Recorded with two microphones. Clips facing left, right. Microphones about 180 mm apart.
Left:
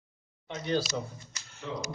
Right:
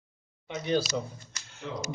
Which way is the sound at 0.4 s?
15° right (ahead or behind).